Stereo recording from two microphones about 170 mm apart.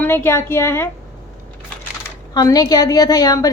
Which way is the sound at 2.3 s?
20° left (ahead or behind).